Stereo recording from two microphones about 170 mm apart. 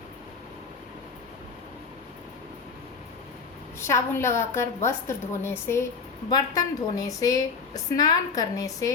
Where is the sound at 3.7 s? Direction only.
15° left (ahead or behind).